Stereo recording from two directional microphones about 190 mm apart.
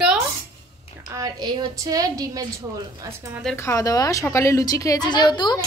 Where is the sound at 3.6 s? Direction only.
15° left (ahead or behind).